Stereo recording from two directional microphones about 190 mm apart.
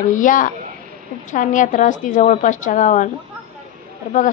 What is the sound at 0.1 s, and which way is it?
A woman's voice, 45° left (ahead or behind).